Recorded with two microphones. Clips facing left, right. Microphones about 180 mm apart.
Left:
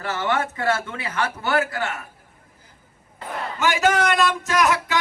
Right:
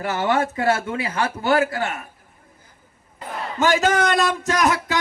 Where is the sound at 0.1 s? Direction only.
30° right (ahead or behind).